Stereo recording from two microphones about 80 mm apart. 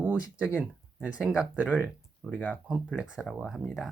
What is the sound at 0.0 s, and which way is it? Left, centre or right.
Speech, centre.